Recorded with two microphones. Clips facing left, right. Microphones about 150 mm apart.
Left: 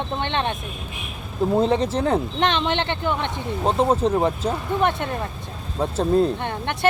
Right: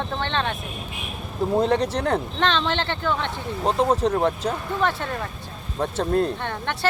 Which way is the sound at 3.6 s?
5° left (ahead or behind).